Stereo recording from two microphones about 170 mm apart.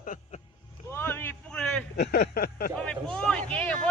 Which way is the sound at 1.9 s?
75° left (ahead or behind).